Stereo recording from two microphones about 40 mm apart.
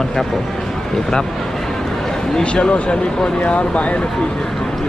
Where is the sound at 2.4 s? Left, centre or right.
Left.